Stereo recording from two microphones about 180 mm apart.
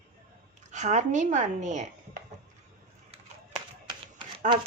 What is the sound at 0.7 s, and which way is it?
Speech, 40° right (ahead or behind).